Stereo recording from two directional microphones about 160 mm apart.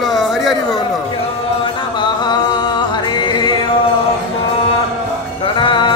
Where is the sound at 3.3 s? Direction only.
30° left (ahead or behind).